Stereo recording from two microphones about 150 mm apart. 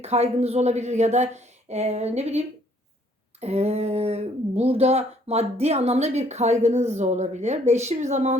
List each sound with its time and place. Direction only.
0.0 s speech: 45° right (ahead or behind)
3.4 s speech: 45° right (ahead or behind)